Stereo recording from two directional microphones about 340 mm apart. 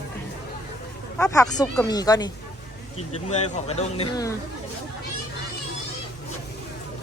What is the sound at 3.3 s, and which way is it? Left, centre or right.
Speech, centre.